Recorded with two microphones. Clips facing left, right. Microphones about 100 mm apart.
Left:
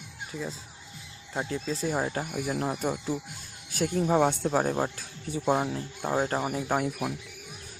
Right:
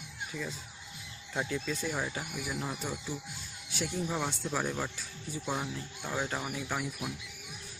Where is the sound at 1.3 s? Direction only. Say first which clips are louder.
Left 3 dB; 35° left (ahead or behind).